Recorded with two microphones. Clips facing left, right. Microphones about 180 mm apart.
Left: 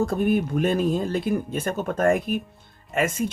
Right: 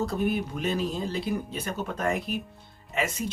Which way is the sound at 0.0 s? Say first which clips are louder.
Left 5 dB; 50° left (ahead or behind).